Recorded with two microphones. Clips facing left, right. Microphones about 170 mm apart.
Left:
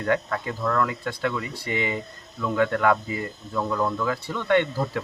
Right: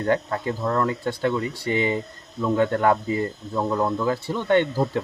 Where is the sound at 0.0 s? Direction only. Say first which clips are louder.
Right 2 dB; 30° right (ahead or behind).